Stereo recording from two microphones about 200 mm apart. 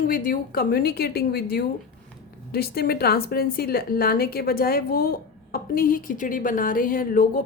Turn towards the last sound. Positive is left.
turn(degrees=45)  # may be behind; listen again after turning